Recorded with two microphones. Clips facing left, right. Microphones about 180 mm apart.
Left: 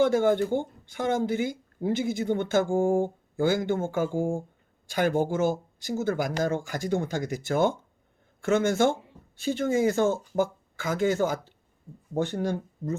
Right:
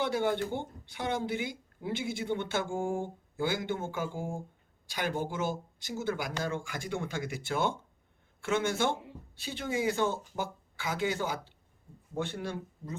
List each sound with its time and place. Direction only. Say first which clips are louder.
0.0 s a woman's voice: left 8 dB; 45° left (ahead or behind)